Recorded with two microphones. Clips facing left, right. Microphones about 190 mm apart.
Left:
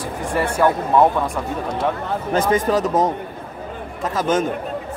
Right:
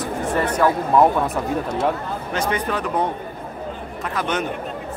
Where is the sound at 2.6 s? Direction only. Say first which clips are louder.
Left 5 dB; 40° left (ahead or behind).